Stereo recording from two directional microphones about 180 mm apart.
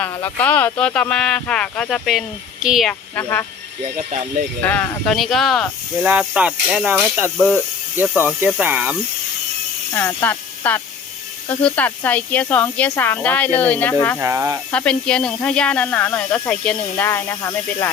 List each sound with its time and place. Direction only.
0.0 s speech: 15° left (ahead or behind); by 2.9 s centre (ahead or behind)
3.2 s speech: 10° left (ahead or behind)
4.6 s speech: 10° left (ahead or behind); by 9.0 s 10° right (ahead or behind)
9.9 s speech: 10° left (ahead or behind)
14.2 s speech: 15° right (ahead or behind)
14.7 s speech: 5° left (ahead or behind)